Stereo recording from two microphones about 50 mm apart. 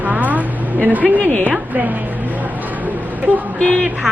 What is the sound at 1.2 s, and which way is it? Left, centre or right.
Speech, left.